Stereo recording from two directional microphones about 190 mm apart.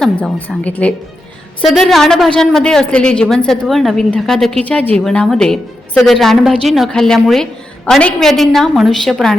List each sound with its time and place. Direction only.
0.0 s a woman's voice: 5° left (ahead or behind)